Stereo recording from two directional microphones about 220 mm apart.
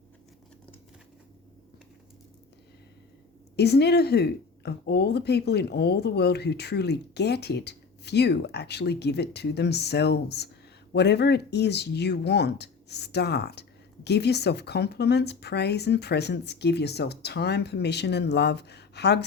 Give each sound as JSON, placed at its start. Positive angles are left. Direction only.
{"t": 3.5, "sound": "speech", "side_deg": 50}